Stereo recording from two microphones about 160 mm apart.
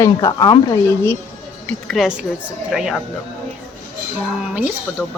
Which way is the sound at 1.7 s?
Centre (ahead or behind).